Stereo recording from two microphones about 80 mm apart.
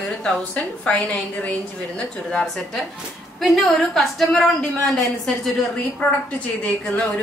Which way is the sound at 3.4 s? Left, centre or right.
Centre.